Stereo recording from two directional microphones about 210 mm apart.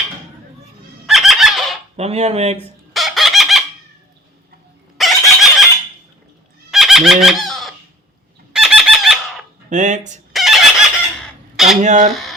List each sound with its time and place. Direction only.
1.0 s fowl: centre (ahead or behind)
2.0 s speech: 30° right (ahead or behind)
2.9 s chicken: centre (ahead or behind)
4.9 s chicken: centre (ahead or behind)
6.7 s fowl: centre (ahead or behind)
9.6 s speech: 35° right (ahead or behind)
10.3 s fowl: centre (ahead or behind)
11.5 s a sound: centre (ahead or behind)
11.8 s speech: 35° right (ahead or behind)